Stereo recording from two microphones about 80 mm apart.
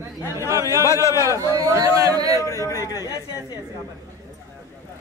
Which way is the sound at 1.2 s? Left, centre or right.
Right.